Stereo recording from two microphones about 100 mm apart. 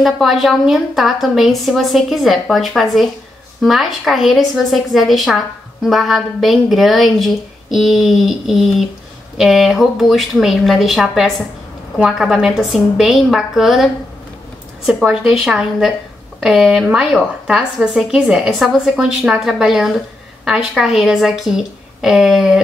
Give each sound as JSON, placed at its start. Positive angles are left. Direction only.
{"t": 0.0, "sound": "speech", "side_deg": 0}
{"t": 14.9, "sound": "speech", "side_deg": -5}